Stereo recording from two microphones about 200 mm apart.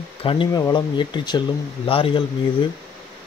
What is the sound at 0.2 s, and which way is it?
Speech, 25° left (ahead or behind).